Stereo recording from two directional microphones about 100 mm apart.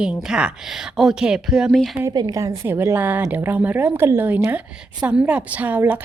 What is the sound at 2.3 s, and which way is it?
Speech, 35° right (ahead or behind).